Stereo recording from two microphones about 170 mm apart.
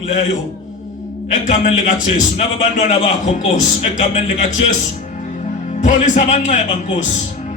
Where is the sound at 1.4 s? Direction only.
45° left (ahead or behind).